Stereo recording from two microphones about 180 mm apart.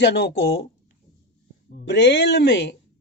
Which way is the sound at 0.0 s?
65° left (ahead or behind).